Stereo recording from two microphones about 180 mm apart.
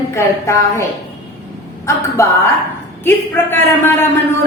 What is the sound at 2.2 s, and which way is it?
A woman's voice, 15° left (ahead or behind).